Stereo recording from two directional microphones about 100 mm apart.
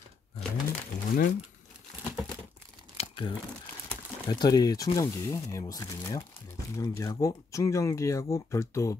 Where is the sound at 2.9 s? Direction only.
65° left (ahead or behind).